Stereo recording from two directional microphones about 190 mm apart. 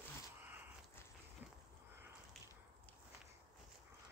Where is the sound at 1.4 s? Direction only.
10° right (ahead or behind).